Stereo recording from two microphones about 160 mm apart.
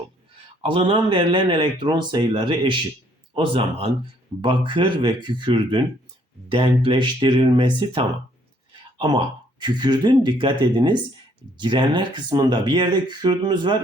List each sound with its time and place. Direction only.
0.6 s speech: 35° right (ahead or behind)